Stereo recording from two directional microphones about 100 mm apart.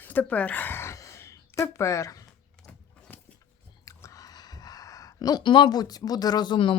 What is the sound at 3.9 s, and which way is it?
Speech, 35° left (ahead or behind).